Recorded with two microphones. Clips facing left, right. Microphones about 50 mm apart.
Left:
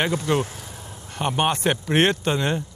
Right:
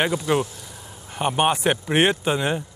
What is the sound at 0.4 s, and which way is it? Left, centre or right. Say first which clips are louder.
Speech: right 1 dB; left.